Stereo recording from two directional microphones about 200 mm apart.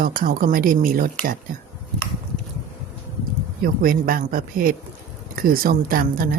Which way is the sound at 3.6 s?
45° right (ahead or behind).